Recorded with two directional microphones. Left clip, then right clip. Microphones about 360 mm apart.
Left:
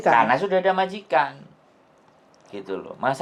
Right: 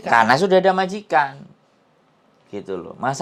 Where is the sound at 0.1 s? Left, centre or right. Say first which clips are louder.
Right 4 dB; right.